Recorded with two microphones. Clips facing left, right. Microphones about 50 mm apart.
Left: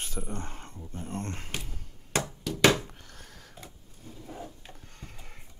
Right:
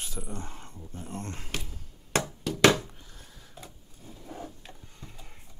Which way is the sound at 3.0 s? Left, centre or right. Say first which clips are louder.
Left 2 dB; left.